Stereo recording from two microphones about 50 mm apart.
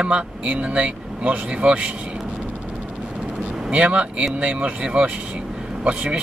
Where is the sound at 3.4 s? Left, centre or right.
Right.